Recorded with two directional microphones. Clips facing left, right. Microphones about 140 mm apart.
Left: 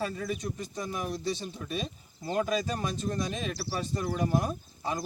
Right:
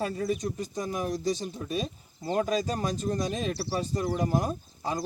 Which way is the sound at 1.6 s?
25° right (ahead or behind).